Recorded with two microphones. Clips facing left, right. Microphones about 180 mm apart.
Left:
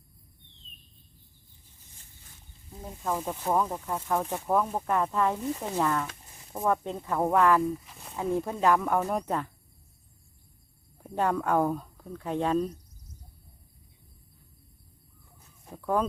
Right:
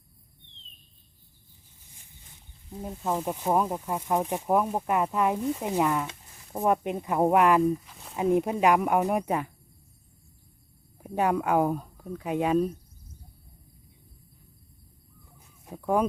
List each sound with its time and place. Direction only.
2.8 s speech: 15° right (ahead or behind)
10.9 s speech: 10° right (ahead or behind)
15.4 s chicken: 15° right (ahead or behind)